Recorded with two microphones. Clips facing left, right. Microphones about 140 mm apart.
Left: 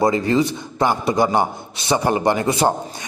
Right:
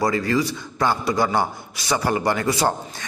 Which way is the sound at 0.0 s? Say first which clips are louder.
Left 4 dB; 25° left (ahead or behind).